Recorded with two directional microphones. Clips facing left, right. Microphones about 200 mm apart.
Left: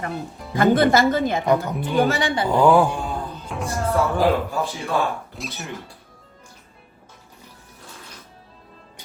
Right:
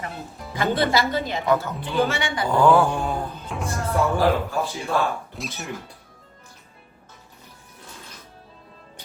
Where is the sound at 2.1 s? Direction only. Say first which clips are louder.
Left 5 dB; 35° left (ahead or behind).